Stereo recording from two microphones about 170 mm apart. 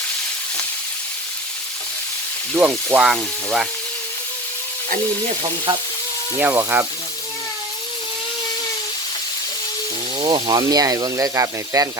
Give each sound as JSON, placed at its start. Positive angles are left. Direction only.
{"t": 2.6, "sound": "speech", "side_deg": -10}
{"t": 6.3, "sound": "speech", "side_deg": -15}
{"t": 10.2, "sound": "speech", "side_deg": -25}